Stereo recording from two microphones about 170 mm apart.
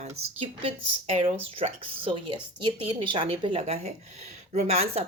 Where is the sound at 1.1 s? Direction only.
35° right (ahead or behind).